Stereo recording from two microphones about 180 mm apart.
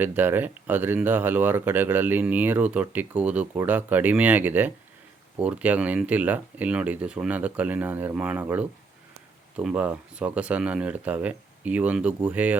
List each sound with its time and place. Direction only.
0.0 s speech: 10° right (ahead or behind)